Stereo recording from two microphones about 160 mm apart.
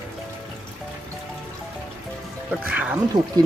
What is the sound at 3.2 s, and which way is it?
Speech, 25° right (ahead or behind).